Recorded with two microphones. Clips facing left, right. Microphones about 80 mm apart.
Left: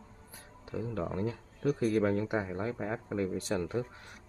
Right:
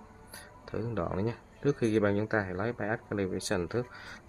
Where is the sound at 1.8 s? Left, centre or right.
Right.